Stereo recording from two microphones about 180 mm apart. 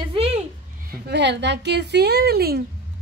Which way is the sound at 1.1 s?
75° right (ahead or behind).